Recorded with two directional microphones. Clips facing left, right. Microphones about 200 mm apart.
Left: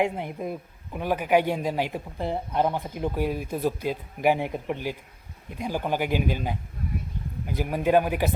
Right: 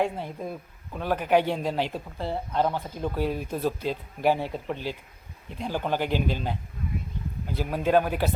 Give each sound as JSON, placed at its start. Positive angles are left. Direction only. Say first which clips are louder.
{"t": 0.0, "sound": "speech", "louder": "left 2 dB", "side_deg": 15}